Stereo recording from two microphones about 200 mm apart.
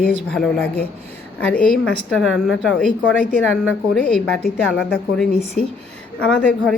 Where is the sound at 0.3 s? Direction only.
Centre (ahead or behind).